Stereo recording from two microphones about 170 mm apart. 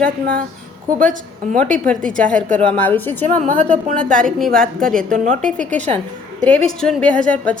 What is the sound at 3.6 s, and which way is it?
Speech, 45° right (ahead or behind).